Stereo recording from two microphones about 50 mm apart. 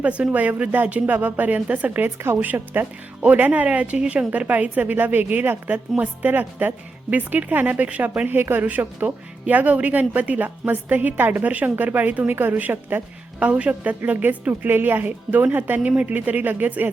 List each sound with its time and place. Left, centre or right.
0.3 s speech: right
8.4 s a woman's voice: right
13.4 s speech: right
15.8 s speech: right